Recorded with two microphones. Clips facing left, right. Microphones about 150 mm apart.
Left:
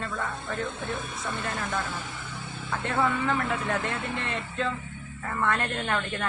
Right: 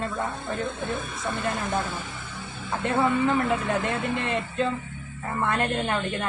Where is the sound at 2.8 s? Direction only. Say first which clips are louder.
Right 4 dB; 15° right (ahead or behind).